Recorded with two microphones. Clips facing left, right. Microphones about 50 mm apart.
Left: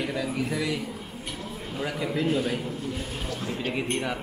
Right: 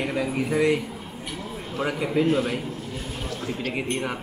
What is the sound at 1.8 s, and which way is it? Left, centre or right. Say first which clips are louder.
Speech: right 4 dB; right.